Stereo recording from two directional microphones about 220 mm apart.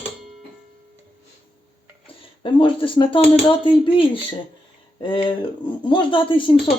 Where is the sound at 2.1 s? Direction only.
25° left (ahead or behind).